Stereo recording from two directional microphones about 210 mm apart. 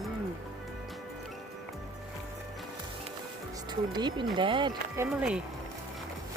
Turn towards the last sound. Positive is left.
turn(degrees=-5)  # may be behind; listen again after turning